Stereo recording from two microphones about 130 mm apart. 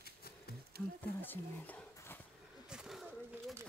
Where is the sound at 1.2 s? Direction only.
15° left (ahead or behind).